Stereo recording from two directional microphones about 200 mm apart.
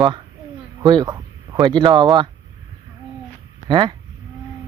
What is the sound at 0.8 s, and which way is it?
Speech, 20° right (ahead or behind).